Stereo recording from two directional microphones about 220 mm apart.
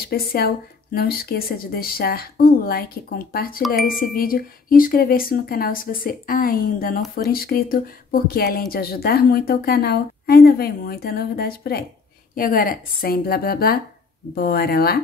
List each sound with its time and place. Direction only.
0.0 s speech: 45° left (ahead or behind)